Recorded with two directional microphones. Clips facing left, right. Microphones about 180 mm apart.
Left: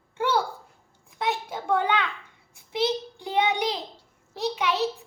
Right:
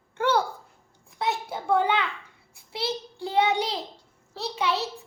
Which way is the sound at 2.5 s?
20° left (ahead or behind).